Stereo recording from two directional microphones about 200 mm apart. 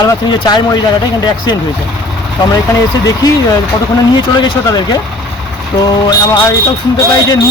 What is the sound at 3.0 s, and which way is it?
Speech, 20° left (ahead or behind).